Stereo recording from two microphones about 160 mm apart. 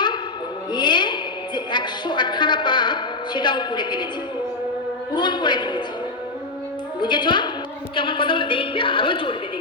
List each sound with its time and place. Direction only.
0.7 s music: 30° left (ahead or behind)
1.5 s a woman's voice: 30° left (ahead or behind)
5.1 s a woman's voice: 30° left (ahead or behind)
7.0 s a woman's voice: 30° left (ahead or behind)